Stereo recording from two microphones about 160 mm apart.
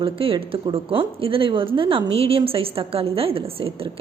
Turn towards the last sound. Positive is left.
turn(degrees=-35)  # may be behind; listen again after turning